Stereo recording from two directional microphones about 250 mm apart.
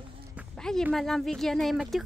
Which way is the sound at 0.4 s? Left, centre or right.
Centre.